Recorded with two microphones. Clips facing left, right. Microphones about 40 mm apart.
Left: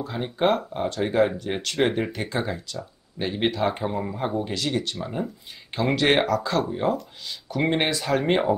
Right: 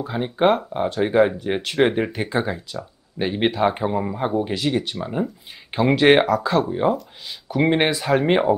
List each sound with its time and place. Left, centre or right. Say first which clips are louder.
0.0 s a man's voice: right 4 dB; centre